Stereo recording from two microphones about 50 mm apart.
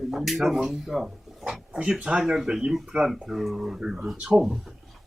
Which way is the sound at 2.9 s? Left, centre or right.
Right.